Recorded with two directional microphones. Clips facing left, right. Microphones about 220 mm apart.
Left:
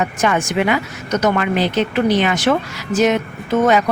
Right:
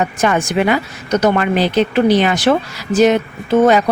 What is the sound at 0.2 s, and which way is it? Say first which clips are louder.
Speech: right 2 dB; 35° right (ahead or behind).